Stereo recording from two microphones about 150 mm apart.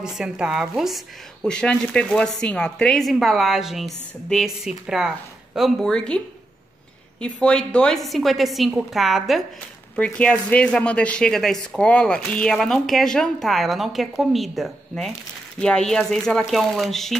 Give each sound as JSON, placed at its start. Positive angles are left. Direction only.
{"t": 0.0, "sound": "speech", "side_deg": -5}